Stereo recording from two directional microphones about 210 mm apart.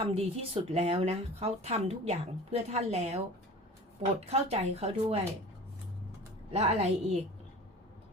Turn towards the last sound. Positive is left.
turn(degrees=-30)  # may be behind; listen again after turning